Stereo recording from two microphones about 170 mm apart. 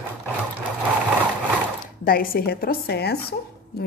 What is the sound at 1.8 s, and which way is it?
Speech, 55° left (ahead or behind).